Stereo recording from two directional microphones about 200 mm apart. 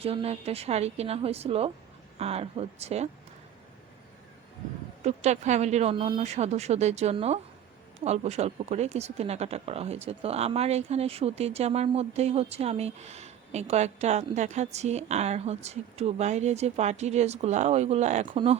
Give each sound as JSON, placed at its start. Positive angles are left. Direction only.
{"t": 0.0, "sound": "speech", "side_deg": -30}
{"t": 5.0, "sound": "speech", "side_deg": -35}